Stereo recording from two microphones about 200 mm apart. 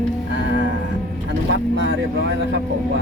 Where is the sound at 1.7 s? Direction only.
70° right (ahead or behind).